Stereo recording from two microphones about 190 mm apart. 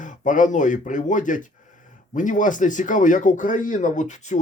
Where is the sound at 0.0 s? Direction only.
45° left (ahead or behind).